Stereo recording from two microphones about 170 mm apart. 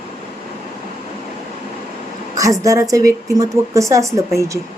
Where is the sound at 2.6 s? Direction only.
20° right (ahead or behind).